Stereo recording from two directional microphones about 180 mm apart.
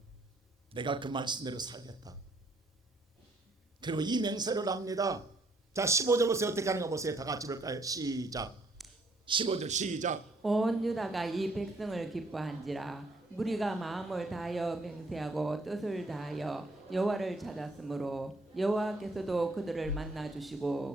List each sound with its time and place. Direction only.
0.7 s a man's voice: 25° right (ahead or behind)
3.8 s a man's voice: 25° right (ahead or behind)
8.8 s a sound: centre (ahead or behind)
9.2 s a man's voice: 30° right (ahead or behind)
10.4 s a woman's voice: centre (ahead or behind)